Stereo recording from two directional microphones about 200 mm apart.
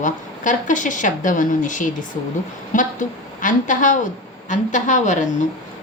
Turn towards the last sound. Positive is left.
turn(degrees=35)  # may be behind; listen again after turning